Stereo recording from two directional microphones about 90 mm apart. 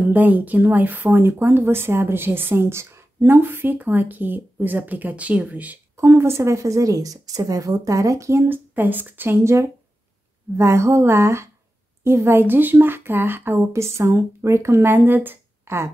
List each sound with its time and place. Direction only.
0.0 s speech: 20° right (ahead or behind)
5.9 s a woman's voice: 30° right (ahead or behind)